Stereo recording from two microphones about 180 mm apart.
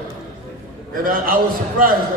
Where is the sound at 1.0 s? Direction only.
50° right (ahead or behind).